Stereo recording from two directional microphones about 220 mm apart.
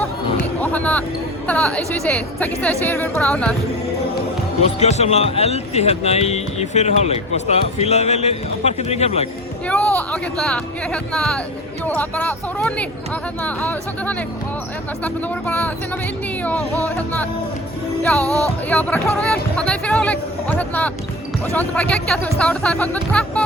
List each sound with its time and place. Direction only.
0.6 s a sound: 5° left (ahead or behind)
1.5 s speech: 5° left (ahead or behind)
4.6 s a man's voice: 30° left (ahead or behind)
9.6 s speech: 5° left (ahead or behind)
18.2 s music: 15° right (ahead or behind)
18.7 s speech: 5° left (ahead or behind)